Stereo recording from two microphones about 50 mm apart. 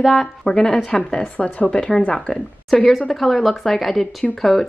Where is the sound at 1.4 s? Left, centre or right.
Left.